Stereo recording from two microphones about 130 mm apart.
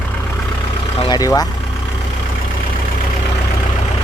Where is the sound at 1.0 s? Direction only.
30° left (ahead or behind).